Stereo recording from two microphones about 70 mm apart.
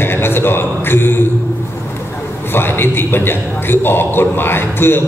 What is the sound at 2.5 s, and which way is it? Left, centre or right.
A man's voice, left.